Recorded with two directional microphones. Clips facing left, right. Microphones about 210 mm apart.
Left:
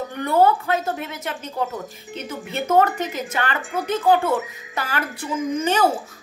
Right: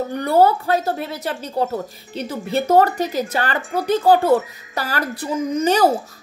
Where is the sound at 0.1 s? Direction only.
35° right (ahead or behind).